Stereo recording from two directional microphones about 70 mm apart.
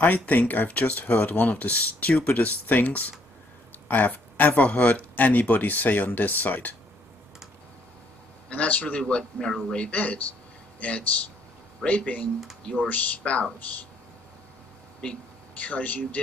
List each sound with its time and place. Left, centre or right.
0.0 s speech: left
8.5 s a man's voice: centre
15.6 s speech: left